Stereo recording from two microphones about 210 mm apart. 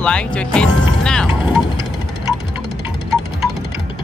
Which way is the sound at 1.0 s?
5° left (ahead or behind).